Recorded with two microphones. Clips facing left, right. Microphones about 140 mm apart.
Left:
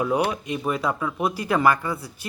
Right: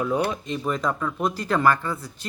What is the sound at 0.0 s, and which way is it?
Speech, 15° left (ahead or behind).